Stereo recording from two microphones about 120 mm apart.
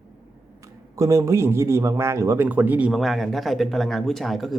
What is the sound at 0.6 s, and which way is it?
A man's voice, 25° right (ahead or behind).